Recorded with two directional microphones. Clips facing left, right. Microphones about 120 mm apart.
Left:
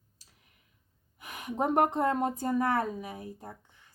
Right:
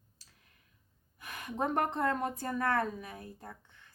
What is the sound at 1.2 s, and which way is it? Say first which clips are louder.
Speech: left 3 dB; 15° left (ahead or behind).